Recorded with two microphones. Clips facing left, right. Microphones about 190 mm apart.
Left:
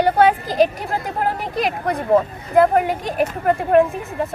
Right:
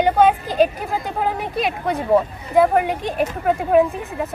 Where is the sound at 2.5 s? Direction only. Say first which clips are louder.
Left 1 dB; centre (ahead or behind).